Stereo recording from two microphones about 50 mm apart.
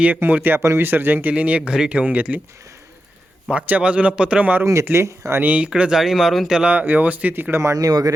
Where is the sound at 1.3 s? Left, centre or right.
Right.